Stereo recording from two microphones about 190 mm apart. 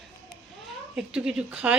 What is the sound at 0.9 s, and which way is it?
Speech, 5° right (ahead or behind).